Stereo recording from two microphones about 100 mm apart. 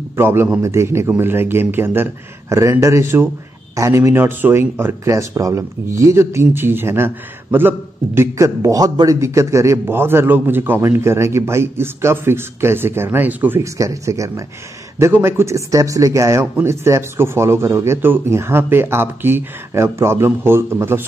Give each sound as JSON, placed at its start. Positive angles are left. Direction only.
{"t": 0.1, "sound": "a man's voice", "side_deg": -25}
{"t": 13.6, "sound": "a man's voice", "side_deg": -30}